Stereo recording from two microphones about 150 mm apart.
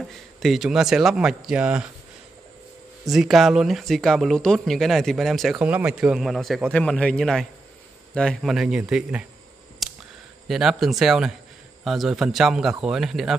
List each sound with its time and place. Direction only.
0.4 s speech: centre (ahead or behind)
3.1 s speech: centre (ahead or behind)
5.6 s speech: 10° right (ahead or behind)
9.8 s a sound: centre (ahead or behind)
10.5 s speech: centre (ahead or behind)